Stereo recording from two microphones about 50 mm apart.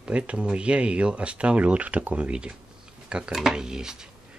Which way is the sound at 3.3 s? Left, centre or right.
Centre.